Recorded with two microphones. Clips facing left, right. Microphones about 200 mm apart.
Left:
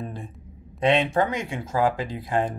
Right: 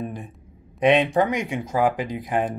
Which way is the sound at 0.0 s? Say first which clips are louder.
Right 3 dB; 15° right (ahead or behind).